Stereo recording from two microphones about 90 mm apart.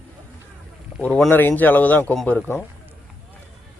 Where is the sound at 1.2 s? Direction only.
20° left (ahead or behind).